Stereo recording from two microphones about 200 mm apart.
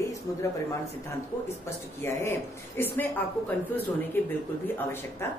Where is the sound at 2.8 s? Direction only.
10° left (ahead or behind).